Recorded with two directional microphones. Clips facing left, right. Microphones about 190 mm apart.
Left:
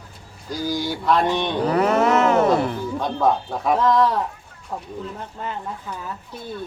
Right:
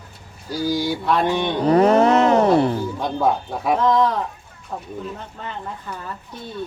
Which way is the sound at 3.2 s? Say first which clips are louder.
Even; 10° right (ahead or behind).